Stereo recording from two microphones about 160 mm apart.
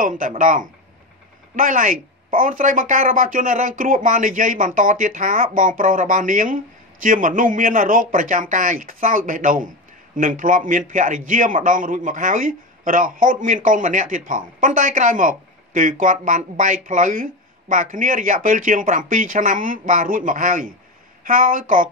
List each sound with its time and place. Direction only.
0.0 s a man's voice: 55° right (ahead or behind)